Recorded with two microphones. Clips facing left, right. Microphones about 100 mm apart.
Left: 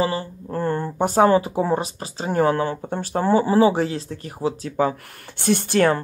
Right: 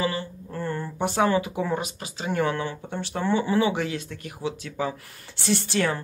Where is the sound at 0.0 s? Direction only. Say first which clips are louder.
Left 5 dB; 30° left (ahead or behind).